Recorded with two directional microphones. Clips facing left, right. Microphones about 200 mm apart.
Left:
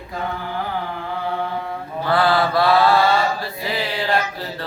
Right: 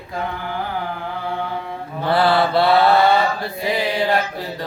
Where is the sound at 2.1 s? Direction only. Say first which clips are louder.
Right 1 dB; 25° right (ahead or behind).